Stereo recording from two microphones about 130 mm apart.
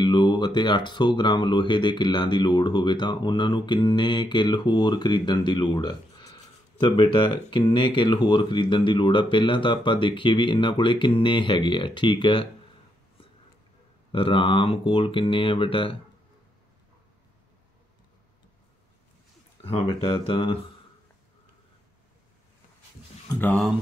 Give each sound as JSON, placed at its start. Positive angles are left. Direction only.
{"t": 0.0, "sound": "speech", "side_deg": 35}
{"t": 14.1, "sound": "speech", "side_deg": 40}
{"t": 19.6, "sound": "speech", "side_deg": 45}